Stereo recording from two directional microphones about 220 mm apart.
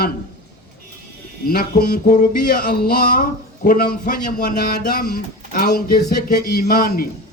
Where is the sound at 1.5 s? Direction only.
40° left (ahead or behind).